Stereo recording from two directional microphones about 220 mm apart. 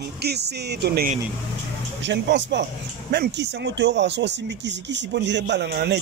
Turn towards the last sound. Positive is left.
turn(degrees=-50)  # may be behind; listen again after turning